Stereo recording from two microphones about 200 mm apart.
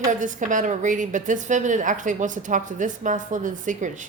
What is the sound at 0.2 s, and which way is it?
A woman's voice, 40° right (ahead or behind).